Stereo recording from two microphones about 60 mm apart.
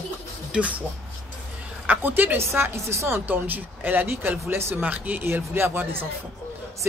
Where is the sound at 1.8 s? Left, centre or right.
Right.